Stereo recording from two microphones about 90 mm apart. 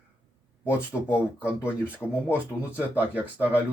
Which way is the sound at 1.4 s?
15° right (ahead or behind).